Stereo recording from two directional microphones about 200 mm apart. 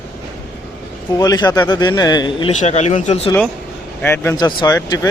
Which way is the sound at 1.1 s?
20° left (ahead or behind).